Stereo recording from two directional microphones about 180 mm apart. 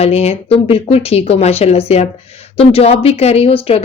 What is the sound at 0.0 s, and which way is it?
A woman's voice, 35° left (ahead or behind).